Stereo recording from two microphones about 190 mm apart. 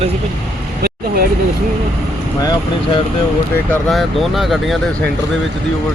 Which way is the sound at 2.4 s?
20° left (ahead or behind).